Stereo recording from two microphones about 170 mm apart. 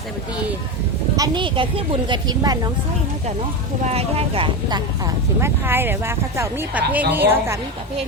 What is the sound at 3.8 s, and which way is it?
Speech, 40° right (ahead or behind).